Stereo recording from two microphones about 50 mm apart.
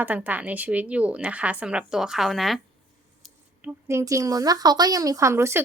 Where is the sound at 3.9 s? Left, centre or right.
Right.